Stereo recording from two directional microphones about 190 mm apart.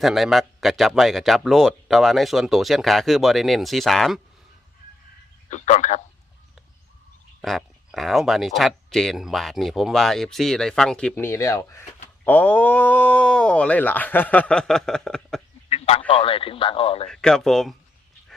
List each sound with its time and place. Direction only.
0.0 s speech: centre (ahead or behind)
5.5 s speech: 40° left (ahead or behind)
7.4 s speech: centre (ahead or behind)
15.7 s speech: 30° left (ahead or behind)
17.1 s speech: 5° left (ahead or behind)